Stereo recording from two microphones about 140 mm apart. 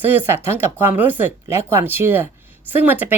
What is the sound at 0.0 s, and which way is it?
A woman's voice, 15° right (ahead or behind).